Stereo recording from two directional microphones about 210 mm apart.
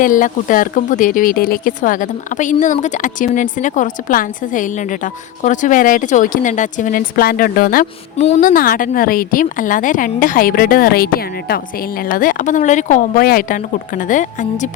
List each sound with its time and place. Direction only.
0.0 s a woman's voice: 40° left (ahead or behind)